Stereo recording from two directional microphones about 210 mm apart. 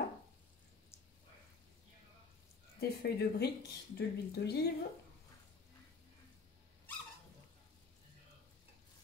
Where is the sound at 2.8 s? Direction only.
50° left (ahead or behind).